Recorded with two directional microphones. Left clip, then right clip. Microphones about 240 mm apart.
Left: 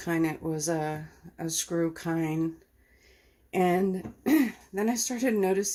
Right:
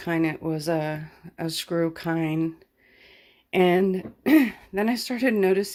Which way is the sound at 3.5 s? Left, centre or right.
Right.